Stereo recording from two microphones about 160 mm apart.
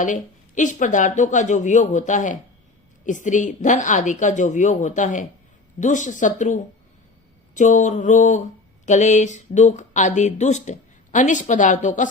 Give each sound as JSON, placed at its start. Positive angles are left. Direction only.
{"t": 0.0, "sound": "speech", "side_deg": 55}